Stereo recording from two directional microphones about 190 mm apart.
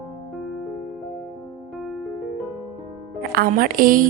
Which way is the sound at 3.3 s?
50° right (ahead or behind).